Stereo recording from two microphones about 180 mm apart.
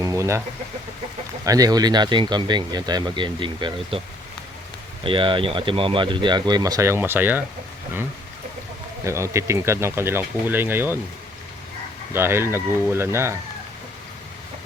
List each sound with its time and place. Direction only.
0.0 s chicken: 15° right (ahead or behind)
1.5 s speech: 20° right (ahead or behind)
5.0 s speech: 30° right (ahead or behind); by 7.4 s 10° right (ahead or behind)
9.0 s speech: 15° right (ahead or behind)
12.1 s speech: 15° right (ahead or behind)